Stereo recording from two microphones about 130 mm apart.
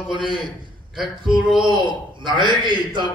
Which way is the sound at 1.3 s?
5° right (ahead or behind).